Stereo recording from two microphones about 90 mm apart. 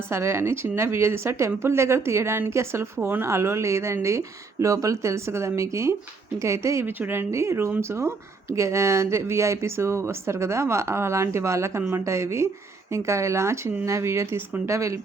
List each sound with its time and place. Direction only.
0.1 s speech: 30° right (ahead or behind)